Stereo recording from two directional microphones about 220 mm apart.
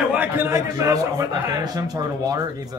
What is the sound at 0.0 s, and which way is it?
A man's voice, 5° right (ahead or behind).